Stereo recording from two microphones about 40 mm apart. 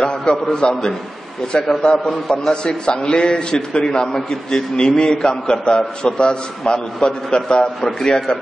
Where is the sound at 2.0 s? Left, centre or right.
Centre.